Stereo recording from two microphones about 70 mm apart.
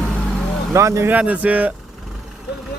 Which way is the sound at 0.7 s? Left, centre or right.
Right.